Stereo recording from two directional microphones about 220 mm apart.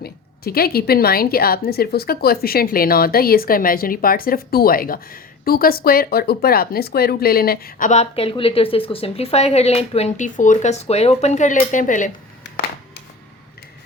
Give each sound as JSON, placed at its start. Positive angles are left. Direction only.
{"t": 0.0, "sound": "a woman's voice", "side_deg": 45}